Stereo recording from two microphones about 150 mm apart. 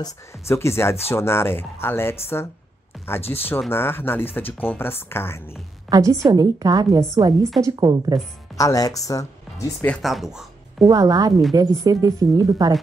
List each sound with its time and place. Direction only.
0.0 s speech: 20° left (ahead or behind)
5.9 s a woman's voice: 25° right (ahead or behind)
8.5 s speech: 25° left (ahead or behind)
10.0 s speech: centre (ahead or behind)
10.9 s a woman's voice: 25° right (ahead or behind)